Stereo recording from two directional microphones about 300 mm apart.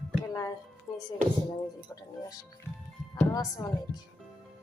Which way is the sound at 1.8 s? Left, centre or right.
Centre.